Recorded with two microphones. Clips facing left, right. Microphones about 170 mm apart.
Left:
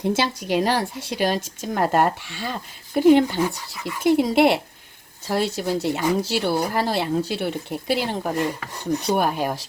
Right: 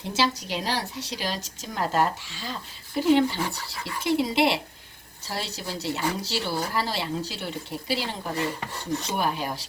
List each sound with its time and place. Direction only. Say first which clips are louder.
0.0 s speech: left 4 dB; 55° left (ahead or behind)
8.7 s dishes: left 5 dB; 20° left (ahead or behind)
9.1 s speech: left 5 dB; 50° left (ahead or behind)